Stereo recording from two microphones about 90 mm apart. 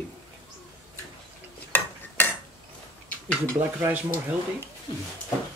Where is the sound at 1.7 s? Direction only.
20° left (ahead or behind).